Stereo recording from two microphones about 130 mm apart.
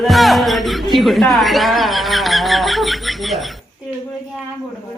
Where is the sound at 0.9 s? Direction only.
Centre (ahead or behind).